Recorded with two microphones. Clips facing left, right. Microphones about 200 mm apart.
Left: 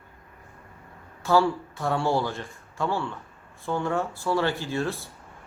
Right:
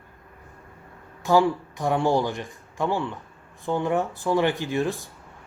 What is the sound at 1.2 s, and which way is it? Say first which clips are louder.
Speech: right 2 dB; 15° right (ahead or behind).